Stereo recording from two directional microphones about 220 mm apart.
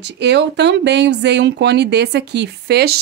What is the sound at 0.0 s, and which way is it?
Speech, 50° right (ahead or behind).